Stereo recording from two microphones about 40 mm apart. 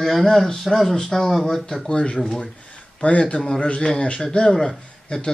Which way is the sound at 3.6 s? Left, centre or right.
Left.